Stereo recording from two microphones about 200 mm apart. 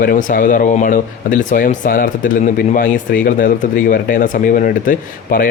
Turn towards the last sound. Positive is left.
turn(degrees=45)  # may be behind; listen again after turning